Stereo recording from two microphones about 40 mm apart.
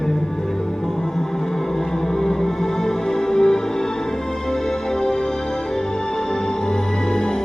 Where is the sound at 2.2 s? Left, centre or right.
Centre.